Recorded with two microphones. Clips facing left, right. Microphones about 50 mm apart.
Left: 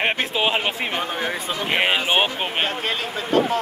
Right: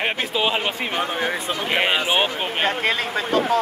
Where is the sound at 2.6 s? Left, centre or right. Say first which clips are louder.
Right 4 dB; right.